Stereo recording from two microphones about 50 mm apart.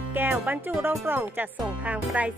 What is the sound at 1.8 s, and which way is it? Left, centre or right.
Speech, right.